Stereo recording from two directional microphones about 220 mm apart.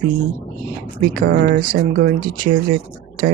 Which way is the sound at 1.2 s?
45° right (ahead or behind).